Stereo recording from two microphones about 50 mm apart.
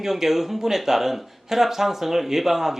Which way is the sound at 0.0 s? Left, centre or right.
Centre.